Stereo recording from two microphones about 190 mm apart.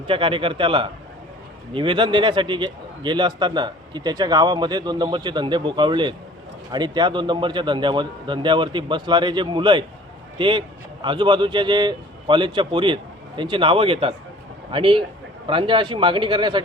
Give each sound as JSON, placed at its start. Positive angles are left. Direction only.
{"t": 0.1, "sound": "a man's voice", "side_deg": -25}